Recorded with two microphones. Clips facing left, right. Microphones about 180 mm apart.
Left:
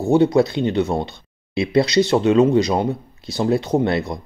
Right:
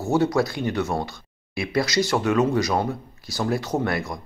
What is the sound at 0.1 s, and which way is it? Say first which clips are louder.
Speech: left 6 dB; 20° left (ahead or behind).